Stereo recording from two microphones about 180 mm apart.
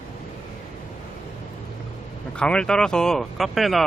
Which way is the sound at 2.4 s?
5° left (ahead or behind).